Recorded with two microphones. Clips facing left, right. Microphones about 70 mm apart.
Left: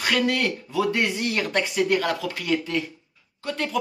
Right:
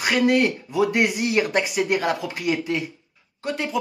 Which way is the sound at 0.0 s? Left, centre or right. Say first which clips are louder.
Right 4 dB; centre.